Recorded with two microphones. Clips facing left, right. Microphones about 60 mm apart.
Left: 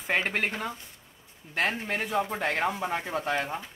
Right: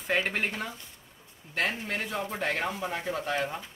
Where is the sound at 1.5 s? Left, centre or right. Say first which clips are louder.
Left 2 dB; centre.